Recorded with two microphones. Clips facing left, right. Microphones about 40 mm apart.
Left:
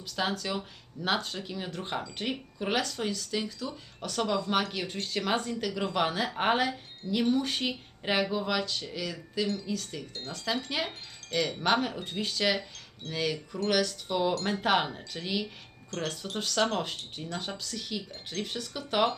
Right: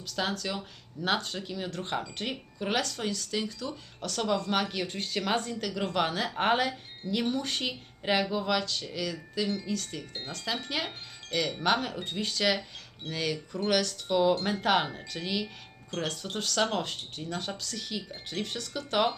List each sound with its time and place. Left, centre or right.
0.0 s speech: centre
10.7 s wind chime: centre
11.6 s speech: centre